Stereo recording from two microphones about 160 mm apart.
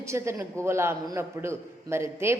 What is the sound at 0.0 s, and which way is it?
A woman's voice, 20° right (ahead or behind).